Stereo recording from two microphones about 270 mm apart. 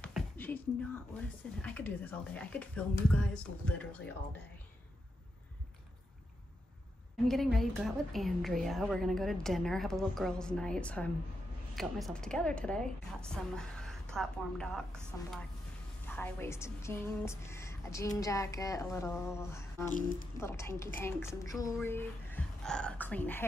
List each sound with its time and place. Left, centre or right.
0.0 s music: centre
1.1 s speech: centre
7.2 s speech: centre
16.1 s a woman's voice: centre
19.9 s speech: left
20.3 s a woman's voice: centre